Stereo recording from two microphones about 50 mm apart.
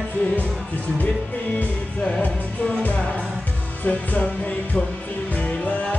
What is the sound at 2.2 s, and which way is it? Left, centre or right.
Music, left.